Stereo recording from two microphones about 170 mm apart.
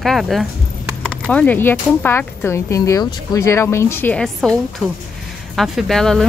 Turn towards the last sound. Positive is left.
turn(degrees=0)  # may be behind; listen again after turning